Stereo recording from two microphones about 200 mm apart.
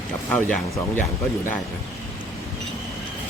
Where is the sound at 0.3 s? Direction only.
5° left (ahead or behind).